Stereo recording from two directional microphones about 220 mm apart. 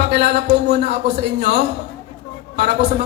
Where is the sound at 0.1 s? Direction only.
50° right (ahead or behind).